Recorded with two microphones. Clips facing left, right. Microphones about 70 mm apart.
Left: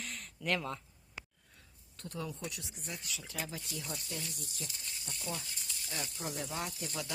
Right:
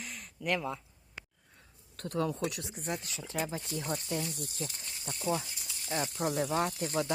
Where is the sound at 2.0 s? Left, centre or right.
Right.